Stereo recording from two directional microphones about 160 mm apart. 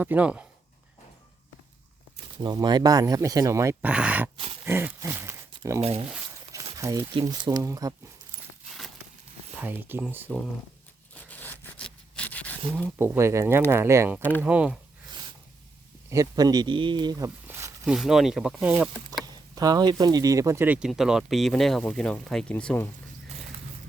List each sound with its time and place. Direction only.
0.0 s speech: 10° right (ahead or behind)
2.4 s speech: 25° right (ahead or behind); by 4.3 s 10° right (ahead or behind)
4.6 s a sound: 15° right (ahead or behind)
5.8 s speech: 40° right (ahead or behind)
6.7 s speech: 20° right (ahead or behind)
9.6 s speech: 10° right (ahead or behind)
11.1 s a sound: 10° left (ahead or behind)
13.0 s speech: 15° right (ahead or behind)
14.2 s speech: 10° left (ahead or behind)
14.4 s speech: 5° right (ahead or behind)
16.0 s speech: 20° right (ahead or behind)
17.8 s speech: 5° right (ahead or behind)
19.2 s speech: 25° right (ahead or behind); by 22.9 s 10° left (ahead or behind)